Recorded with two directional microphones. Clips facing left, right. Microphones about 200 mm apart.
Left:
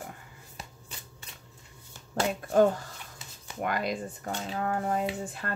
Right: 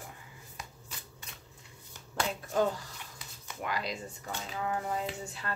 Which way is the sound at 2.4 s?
50° left (ahead or behind).